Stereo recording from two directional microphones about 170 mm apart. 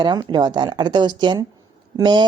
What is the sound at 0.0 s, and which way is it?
Speech, 25° right (ahead or behind).